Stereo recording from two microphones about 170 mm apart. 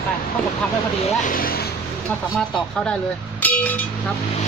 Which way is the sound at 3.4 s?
10° left (ahead or behind).